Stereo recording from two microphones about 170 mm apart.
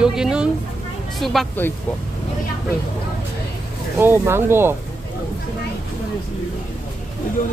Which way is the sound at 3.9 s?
15° right (ahead or behind).